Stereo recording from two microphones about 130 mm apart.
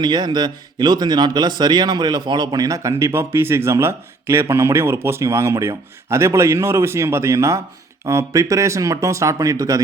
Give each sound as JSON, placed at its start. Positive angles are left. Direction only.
{"t": 0.0, "sound": "speech", "side_deg": -35}